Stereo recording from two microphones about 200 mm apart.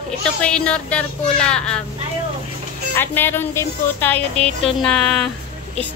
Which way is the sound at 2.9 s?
10° left (ahead or behind).